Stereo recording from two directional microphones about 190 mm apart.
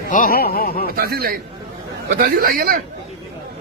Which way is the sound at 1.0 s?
50° right (ahead or behind).